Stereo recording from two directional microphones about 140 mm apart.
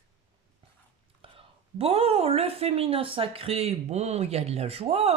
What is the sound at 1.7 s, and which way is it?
Speech, 45° right (ahead or behind).